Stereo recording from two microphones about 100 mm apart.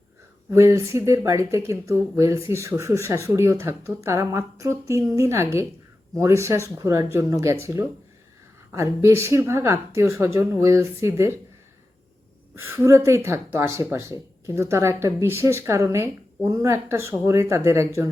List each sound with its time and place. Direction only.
0.5 s speech: 30° right (ahead or behind)
12.5 s speech: 25° right (ahead or behind)